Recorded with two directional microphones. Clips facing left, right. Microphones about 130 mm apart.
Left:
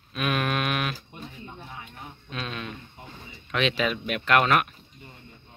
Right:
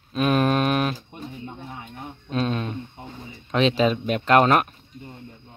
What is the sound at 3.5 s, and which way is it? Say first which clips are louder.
Speech: right 6 dB; 35° right (ahead or behind).